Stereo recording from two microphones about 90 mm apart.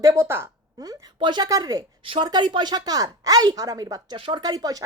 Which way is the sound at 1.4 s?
45° right (ahead or behind).